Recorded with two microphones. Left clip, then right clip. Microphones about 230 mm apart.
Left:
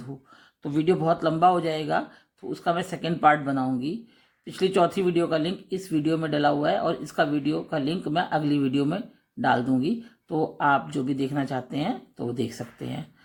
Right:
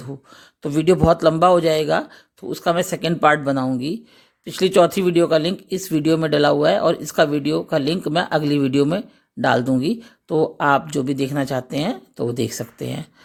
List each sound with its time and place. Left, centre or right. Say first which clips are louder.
0.6 s speech: right 7 dB; right